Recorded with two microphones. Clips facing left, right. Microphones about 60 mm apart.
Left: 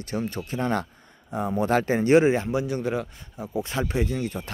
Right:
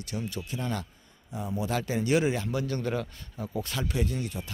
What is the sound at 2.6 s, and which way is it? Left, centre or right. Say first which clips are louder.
Speech: left 4 dB; centre.